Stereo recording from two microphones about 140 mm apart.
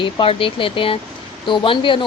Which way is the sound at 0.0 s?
40° left (ahead or behind).